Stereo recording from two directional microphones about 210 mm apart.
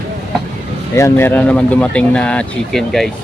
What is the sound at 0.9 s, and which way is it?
Speech, 10° left (ahead or behind).